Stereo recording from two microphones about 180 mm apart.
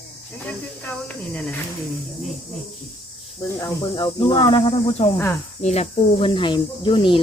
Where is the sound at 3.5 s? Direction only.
20° left (ahead or behind).